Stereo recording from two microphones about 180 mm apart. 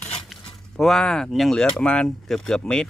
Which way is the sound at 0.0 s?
5° left (ahead or behind).